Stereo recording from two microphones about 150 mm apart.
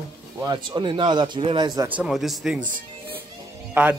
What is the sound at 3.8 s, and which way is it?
Speech, 15° right (ahead or behind).